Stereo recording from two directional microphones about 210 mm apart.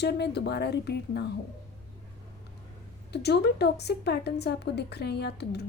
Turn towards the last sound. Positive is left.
turn(degrees=50)  # may be behind; listen again after turning